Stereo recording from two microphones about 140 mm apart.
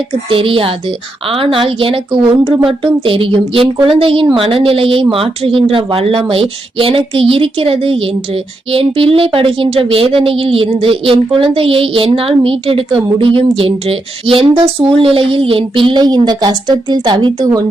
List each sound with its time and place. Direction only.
0.3 s speech: 40° right (ahead or behind)